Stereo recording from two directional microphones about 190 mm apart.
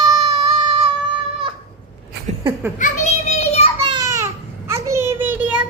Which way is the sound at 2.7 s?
40° left (ahead or behind).